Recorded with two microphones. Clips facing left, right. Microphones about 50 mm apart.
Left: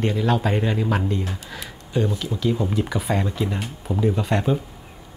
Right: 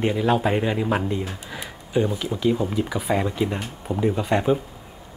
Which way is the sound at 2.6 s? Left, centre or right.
Centre.